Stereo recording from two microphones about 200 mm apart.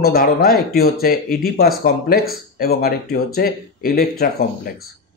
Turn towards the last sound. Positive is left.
turn(degrees=50)  # may be behind; listen again after turning